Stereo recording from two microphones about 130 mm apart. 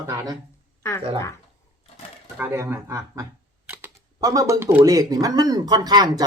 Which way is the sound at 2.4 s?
20° right (ahead or behind).